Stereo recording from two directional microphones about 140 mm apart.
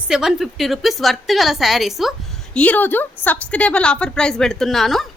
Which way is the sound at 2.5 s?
10° left (ahead or behind).